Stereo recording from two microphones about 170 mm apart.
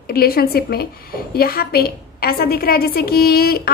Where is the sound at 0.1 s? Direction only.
65° left (ahead or behind).